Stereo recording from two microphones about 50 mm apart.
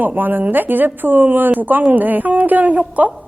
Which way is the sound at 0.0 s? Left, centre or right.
Right.